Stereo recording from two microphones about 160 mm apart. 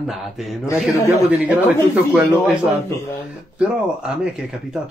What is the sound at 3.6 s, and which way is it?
Speech, 5° right (ahead or behind).